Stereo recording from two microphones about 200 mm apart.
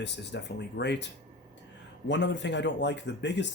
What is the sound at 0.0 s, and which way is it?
A man's voice, 60° left (ahead or behind).